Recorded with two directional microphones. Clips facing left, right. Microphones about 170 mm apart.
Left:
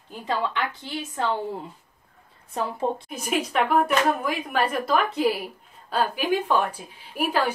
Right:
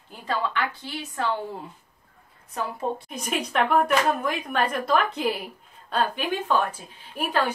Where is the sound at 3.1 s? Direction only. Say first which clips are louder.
Left 2 dB; 5° left (ahead or behind).